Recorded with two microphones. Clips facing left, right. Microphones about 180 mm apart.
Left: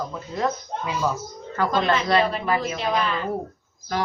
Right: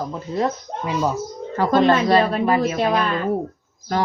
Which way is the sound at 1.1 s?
35° right (ahead or behind).